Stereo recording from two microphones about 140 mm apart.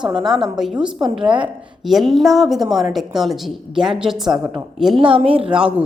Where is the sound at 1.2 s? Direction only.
35° right (ahead or behind).